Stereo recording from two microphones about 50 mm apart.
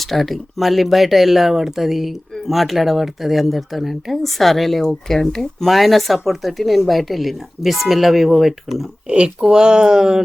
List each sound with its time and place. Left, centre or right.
0.0 s speech: centre
9.0 s speech: centre